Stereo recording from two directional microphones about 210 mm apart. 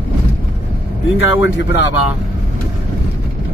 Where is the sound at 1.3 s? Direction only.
65° left (ahead or behind).